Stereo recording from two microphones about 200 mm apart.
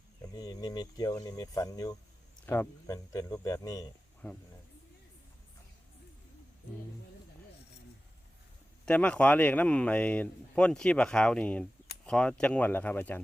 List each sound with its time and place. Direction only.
0.3 s speech: 20° left (ahead or behind)
8.9 s speech: 5° left (ahead or behind)